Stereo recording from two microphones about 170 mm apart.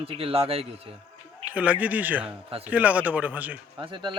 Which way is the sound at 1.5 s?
10° right (ahead or behind).